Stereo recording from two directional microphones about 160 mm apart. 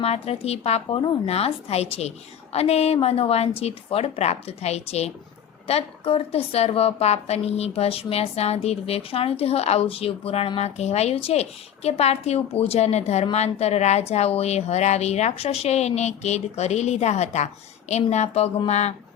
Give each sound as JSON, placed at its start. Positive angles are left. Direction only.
{"t": 0.0, "sound": "a woman's voice", "side_deg": 40}